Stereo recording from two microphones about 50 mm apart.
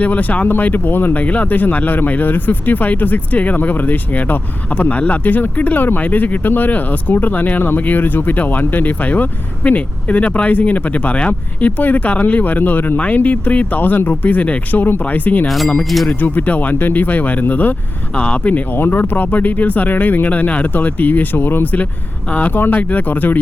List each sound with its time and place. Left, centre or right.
0.0 s speech: left
1.2 s speech: left
14.7 s speech: left
15.4 s speech: centre
16.0 s speech: left
18.1 s speech: left
18.7 s speech: left